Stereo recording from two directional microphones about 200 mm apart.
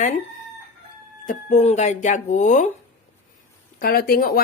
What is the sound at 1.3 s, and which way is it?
Speech, 35° left (ahead or behind).